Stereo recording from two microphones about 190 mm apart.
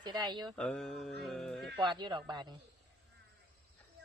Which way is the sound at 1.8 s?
25° right (ahead or behind).